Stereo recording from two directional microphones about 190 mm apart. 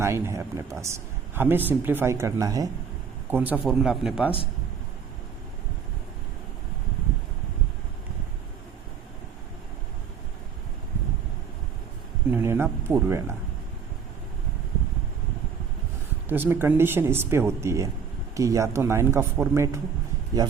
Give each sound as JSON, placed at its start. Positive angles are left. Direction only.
{"t": 0.0, "sound": "speech", "side_deg": -15}
{"t": 12.3, "sound": "speech", "side_deg": -10}
{"t": 16.3, "sound": "a man's voice", "side_deg": -10}